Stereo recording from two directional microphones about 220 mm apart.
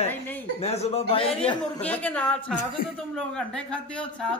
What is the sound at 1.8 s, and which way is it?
A woman's voice, 5° left (ahead or behind).